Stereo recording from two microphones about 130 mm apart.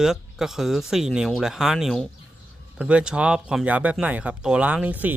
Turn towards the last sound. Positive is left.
turn(degrees=-10)  # may be behind; listen again after turning